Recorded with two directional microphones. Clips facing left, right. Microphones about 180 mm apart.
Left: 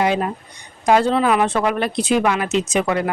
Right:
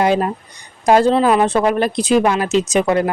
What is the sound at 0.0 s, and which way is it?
Speech, 40° right (ahead or behind).